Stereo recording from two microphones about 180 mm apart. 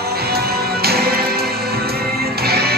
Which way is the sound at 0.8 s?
60° right (ahead or behind).